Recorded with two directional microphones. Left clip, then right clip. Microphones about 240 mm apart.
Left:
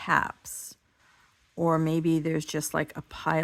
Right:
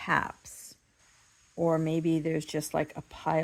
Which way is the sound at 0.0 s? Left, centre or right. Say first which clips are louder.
Left 3 dB; centre.